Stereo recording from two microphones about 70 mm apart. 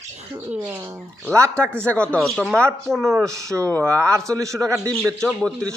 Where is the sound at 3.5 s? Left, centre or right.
Right.